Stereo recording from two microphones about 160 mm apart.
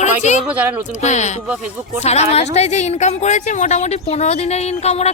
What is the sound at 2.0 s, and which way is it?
Speech, 40° left (ahead or behind).